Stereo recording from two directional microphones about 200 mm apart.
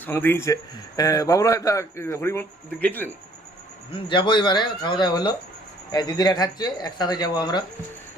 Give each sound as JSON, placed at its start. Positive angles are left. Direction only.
{"t": 0.0, "sound": "a man's voice", "side_deg": 10}
{"t": 3.9, "sound": "speech", "side_deg": 25}